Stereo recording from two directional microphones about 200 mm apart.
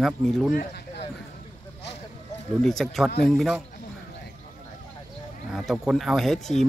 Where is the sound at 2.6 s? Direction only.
Centre (ahead or behind).